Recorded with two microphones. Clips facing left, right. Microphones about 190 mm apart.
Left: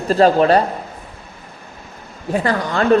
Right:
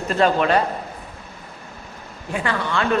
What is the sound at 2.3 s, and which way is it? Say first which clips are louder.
Speech: left 5 dB; 40° left (ahead or behind).